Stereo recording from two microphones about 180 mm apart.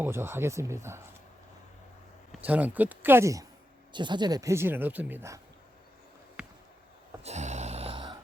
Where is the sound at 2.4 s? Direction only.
10° right (ahead or behind).